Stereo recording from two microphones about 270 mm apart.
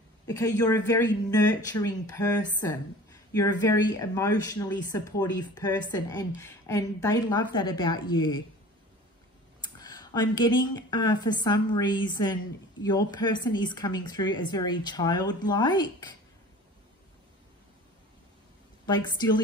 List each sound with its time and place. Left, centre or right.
0.3 s speech: centre
9.6 s speech: centre
18.9 s speech: centre